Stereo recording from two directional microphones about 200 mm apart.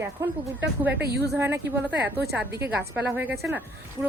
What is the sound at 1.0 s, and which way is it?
Speech, 55° right (ahead or behind).